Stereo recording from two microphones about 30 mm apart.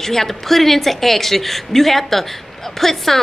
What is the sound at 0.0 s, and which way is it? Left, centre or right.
A woman's voice, centre.